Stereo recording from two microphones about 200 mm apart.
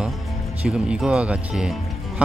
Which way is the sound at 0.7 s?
5° right (ahead or behind).